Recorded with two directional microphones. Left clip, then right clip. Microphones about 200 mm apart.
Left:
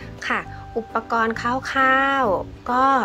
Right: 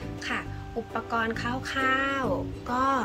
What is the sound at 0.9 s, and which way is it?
Speech, 20° left (ahead or behind).